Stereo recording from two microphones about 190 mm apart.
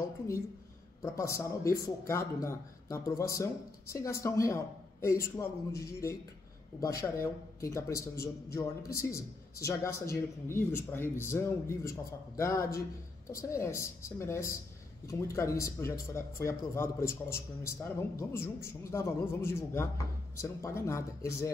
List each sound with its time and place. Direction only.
1.0 s speech: 15° left (ahead or behind)